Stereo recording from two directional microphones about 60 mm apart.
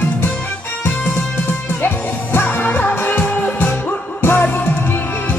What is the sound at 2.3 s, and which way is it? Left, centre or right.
Music, left.